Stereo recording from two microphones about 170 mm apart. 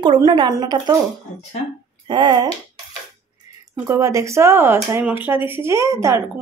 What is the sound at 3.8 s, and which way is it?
Speech, 20° right (ahead or behind).